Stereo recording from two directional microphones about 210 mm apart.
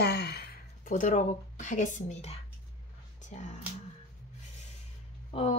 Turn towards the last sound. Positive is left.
turn(degrees=25)  # may be behind; listen again after turning